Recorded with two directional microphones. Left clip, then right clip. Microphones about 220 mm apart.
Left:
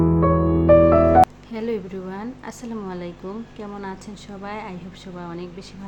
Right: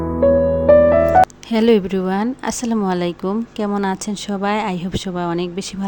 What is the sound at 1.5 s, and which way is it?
Speech, 45° right (ahead or behind).